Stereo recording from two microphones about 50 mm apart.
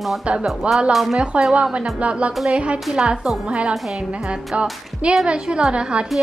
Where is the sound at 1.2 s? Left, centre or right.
Right.